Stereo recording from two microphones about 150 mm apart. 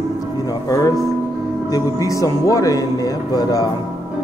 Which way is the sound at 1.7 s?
20° left (ahead or behind).